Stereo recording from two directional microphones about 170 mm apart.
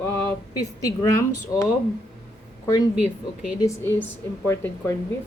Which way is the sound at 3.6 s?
15° left (ahead or behind).